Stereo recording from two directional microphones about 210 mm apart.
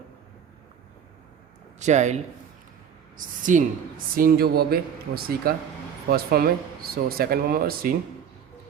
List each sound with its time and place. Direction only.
1.8 s speech: 35° right (ahead or behind)
3.2 s a woman's voice: 40° right (ahead or behind)